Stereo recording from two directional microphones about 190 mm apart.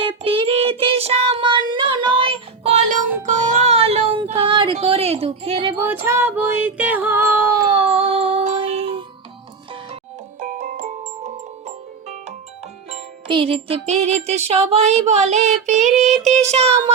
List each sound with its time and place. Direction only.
0.0 s child singing: 30° right (ahead or behind)
3.5 s a sound: 35° right (ahead or behind)
5.9 s music: 15° right (ahead or behind)
7.7 s music: 30° right (ahead or behind)
10.4 s glockenspiel: 45° right (ahead or behind)
12.9 s music: 25° right (ahead or behind)